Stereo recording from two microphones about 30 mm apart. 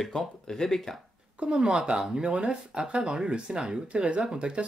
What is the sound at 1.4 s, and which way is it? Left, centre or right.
Speech, right.